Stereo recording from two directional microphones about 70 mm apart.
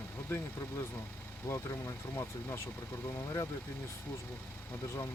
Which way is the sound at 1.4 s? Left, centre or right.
Left.